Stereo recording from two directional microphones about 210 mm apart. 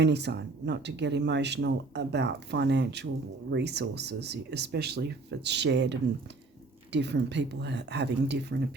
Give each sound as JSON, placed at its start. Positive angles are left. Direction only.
{"t": 0.0, "sound": "speech", "side_deg": -55}